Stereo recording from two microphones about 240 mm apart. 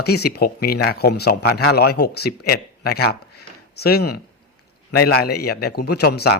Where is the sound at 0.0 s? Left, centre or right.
Left.